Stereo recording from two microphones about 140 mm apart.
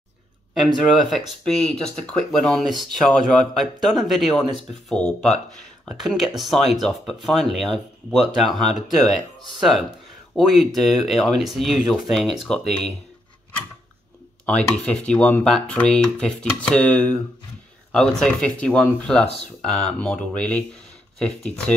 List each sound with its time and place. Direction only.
0.9 s speech: centre (ahead or behind)
14.4 s speech: 5° left (ahead or behind)